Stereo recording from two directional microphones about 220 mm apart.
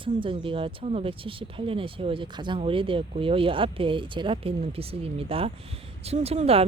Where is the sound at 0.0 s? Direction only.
25° right (ahead or behind).